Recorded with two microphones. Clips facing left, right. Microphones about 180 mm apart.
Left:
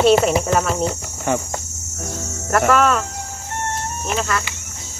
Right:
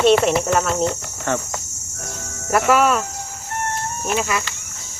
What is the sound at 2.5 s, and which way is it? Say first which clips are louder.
Speech: even; 10° right (ahead or behind).